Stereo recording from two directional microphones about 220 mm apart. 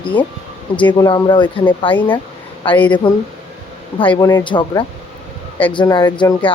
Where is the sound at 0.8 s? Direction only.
20° left (ahead or behind).